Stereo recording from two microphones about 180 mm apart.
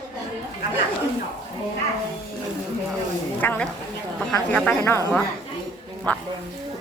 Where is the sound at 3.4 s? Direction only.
10° left (ahead or behind).